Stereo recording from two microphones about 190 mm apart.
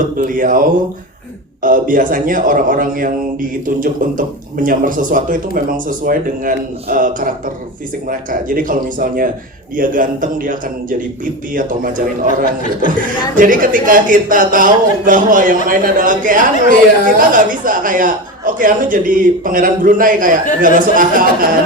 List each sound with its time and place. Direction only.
0.0 s speech: 45° right (ahead or behind)